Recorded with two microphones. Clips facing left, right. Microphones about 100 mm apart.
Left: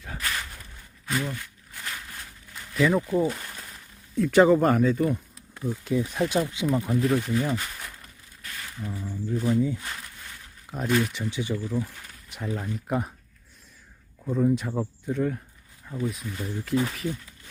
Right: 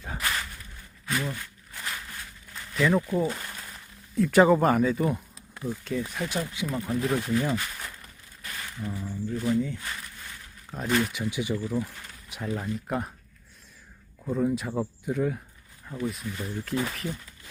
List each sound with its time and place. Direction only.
0.0 s a sound: 30° right (ahead or behind)
1.2 s a sound: 15° right (ahead or behind)
2.7 s speech: centre (ahead or behind)
6.0 s speech: 20° left (ahead or behind)
7.0 s speech: centre (ahead or behind)
8.9 s speech: centre (ahead or behind)
9.3 s speech: 15° left (ahead or behind)
11.0 s speech: 5° right (ahead or behind)
14.3 s speech: 5° right (ahead or behind)